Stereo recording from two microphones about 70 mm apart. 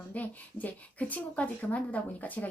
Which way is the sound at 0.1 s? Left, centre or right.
Left.